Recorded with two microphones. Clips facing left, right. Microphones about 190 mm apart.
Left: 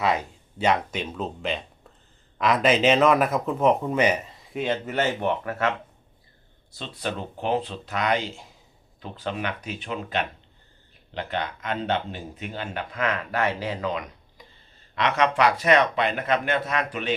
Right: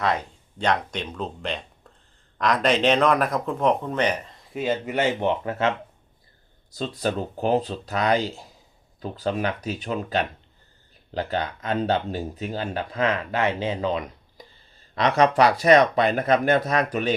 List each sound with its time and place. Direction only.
0.0 s speech: 5° left (ahead or behind); by 5.7 s 25° right (ahead or behind)
6.7 s speech: 40° right (ahead or behind)